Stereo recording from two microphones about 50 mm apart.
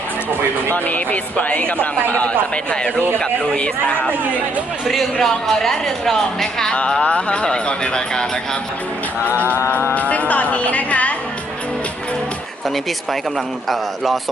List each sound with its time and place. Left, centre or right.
0.7 s speech: left
5.1 s speech: centre
7.0 s speech: left
9.9 s speech: left
13.7 s a man's voice: centre